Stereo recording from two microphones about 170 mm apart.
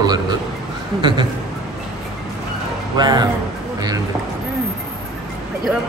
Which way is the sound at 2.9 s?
25° right (ahead or behind).